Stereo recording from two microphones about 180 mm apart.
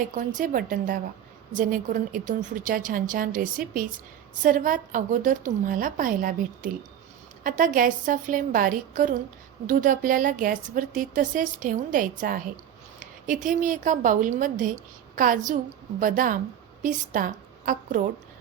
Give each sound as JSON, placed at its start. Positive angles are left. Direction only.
{"t": 0.1, "sound": "a woman's voice", "side_deg": -45}